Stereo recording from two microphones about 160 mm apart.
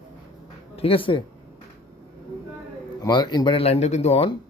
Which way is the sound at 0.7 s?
35° left (ahead or behind).